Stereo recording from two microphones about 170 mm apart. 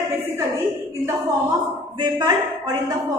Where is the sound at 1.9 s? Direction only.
25° right (ahead or behind).